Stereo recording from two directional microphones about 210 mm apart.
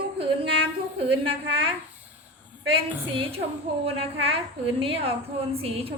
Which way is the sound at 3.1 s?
25° right (ahead or behind).